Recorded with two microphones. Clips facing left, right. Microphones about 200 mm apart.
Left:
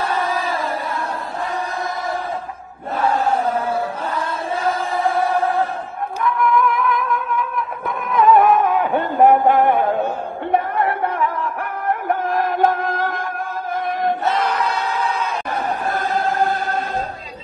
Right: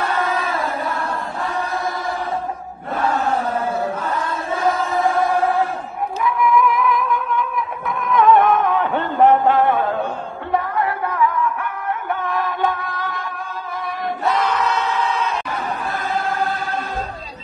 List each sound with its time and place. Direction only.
0.1 s chant: 30° left (ahead or behind)
4.6 s choir: 30° left (ahead or behind)
6.2 s music: centre (ahead or behind); by 10.0 s 15° left (ahead or behind)
10.9 s a sound: 30° left (ahead or behind)
12.1 s music: 45° left (ahead or behind)
16.3 s choir: 50° left (ahead or behind)